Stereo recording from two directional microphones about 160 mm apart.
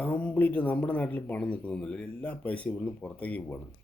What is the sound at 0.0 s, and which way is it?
Speech, 10° left (ahead or behind).